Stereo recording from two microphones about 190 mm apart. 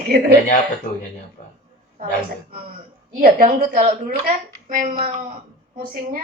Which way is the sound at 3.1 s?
50° right (ahead or behind).